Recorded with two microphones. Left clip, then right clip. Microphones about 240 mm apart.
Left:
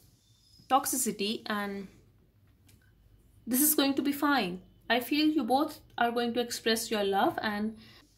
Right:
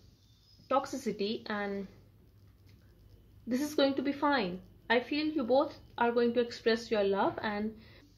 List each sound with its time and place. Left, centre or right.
0.7 s a woman's voice: left
3.4 s a woman's voice: left